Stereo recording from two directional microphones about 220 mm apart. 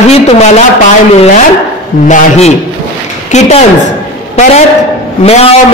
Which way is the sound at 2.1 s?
30° left (ahead or behind).